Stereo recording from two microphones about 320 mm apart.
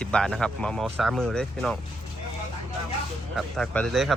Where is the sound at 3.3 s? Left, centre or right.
Centre.